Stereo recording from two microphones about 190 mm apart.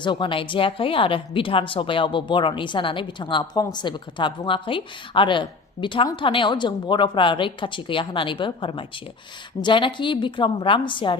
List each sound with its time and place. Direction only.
0.0 s a woman's voice: 25° left (ahead or behind)